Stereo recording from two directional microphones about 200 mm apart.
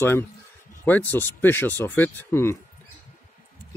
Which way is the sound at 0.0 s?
10° left (ahead or behind).